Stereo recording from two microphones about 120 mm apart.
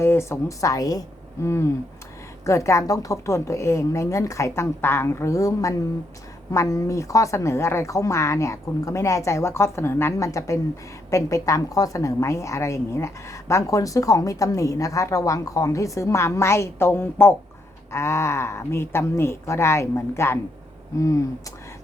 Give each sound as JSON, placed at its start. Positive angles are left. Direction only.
{"t": 0.0, "sound": "a woman's voice", "side_deg": 20}